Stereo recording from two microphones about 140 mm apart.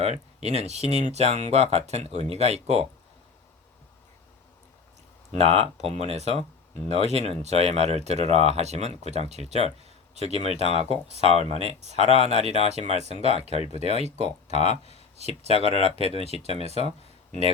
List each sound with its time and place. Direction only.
0.0 s speech: 50° right (ahead or behind)
5.3 s speech: 50° right (ahead or behind)
14.6 s speech: 50° left (ahead or behind)
15.2 s speech: 50° right (ahead or behind)